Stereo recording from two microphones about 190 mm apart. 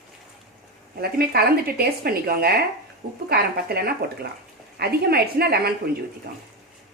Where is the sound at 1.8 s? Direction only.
55° right (ahead or behind).